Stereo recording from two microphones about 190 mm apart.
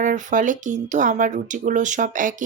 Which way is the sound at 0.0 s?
40° right (ahead or behind).